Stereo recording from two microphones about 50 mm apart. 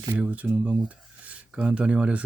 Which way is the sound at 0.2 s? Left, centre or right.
Right.